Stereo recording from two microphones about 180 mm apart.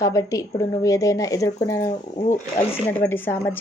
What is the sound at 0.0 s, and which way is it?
A woman's voice, 20° left (ahead or behind).